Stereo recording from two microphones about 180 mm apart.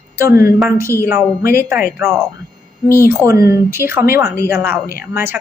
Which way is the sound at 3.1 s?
15° right (ahead or behind).